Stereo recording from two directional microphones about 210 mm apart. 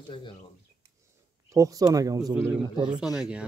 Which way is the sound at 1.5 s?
15° right (ahead or behind).